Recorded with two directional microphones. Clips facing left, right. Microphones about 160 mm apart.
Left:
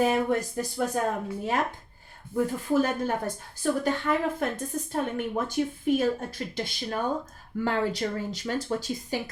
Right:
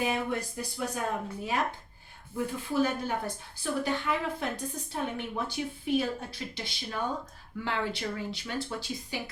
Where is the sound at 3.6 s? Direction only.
45° left (ahead or behind).